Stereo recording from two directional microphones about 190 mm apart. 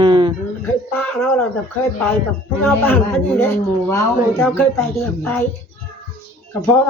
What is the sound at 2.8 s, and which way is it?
Speech, 10° left (ahead or behind).